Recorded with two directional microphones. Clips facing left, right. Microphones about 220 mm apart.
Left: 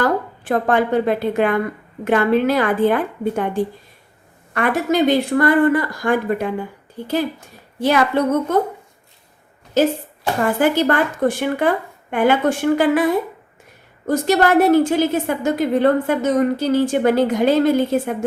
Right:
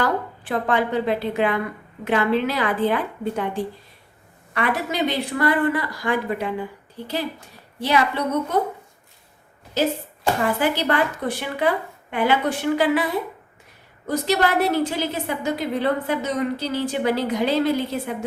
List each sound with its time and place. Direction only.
0.0 s a woman's voice: 45° left (ahead or behind)
9.8 s a woman's voice: 45° left (ahead or behind)
14.1 s a woman's voice: 50° left (ahead or behind)